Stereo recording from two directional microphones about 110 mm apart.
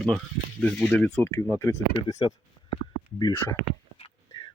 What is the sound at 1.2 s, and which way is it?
Speech, 20° left (ahead or behind).